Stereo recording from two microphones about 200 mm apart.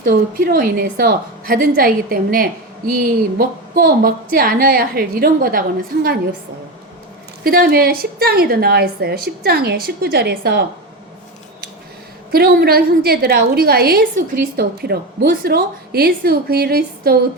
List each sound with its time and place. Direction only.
0.0 s a woman's voice: 45° right (ahead or behind)
7.4 s a woman's voice: 50° right (ahead or behind)
12.3 s a woman's voice: 50° right (ahead or behind)